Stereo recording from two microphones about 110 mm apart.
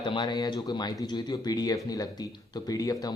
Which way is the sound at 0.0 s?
45° left (ahead or behind).